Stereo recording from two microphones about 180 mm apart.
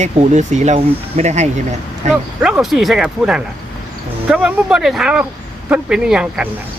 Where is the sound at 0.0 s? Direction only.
40° right (ahead or behind).